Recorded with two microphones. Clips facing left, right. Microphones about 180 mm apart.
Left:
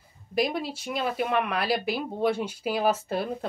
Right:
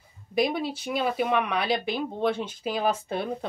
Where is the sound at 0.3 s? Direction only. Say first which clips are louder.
Right 2 dB; centre (ahead or behind).